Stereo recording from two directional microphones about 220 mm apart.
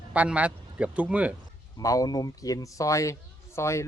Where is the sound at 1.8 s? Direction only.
15° left (ahead or behind).